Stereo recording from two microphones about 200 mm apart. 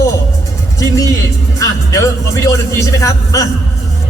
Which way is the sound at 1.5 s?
15° left (ahead or behind).